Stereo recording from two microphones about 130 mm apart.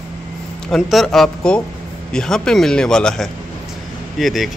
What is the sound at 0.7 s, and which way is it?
Speech, centre (ahead or behind).